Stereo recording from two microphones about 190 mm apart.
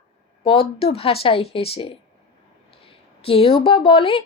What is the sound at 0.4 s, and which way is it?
Speech, 30° left (ahead or behind).